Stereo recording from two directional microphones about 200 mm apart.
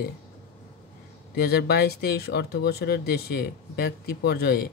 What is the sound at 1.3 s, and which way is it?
Speech, 55° left (ahead or behind).